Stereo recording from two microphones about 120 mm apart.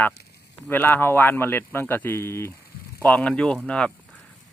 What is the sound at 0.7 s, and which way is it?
Speech, 15° left (ahead or behind).